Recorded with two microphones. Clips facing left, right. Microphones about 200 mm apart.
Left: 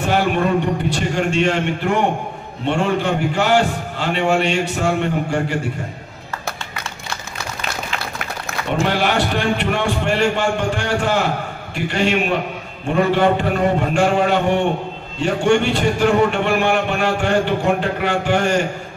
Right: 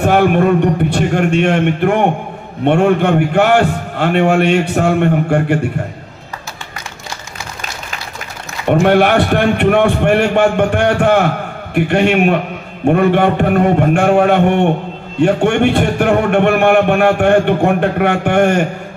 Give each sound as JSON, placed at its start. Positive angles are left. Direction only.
{"t": 0.0, "sound": "a sound", "side_deg": -55}
{"t": 0.8, "sound": "a man's voice", "side_deg": -60}
{"t": 8.6, "sound": "a man's voice", "side_deg": -60}